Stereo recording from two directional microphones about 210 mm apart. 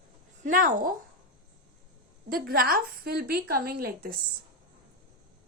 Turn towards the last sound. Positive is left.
turn(degrees=-45)  # may be behind; listen again after turning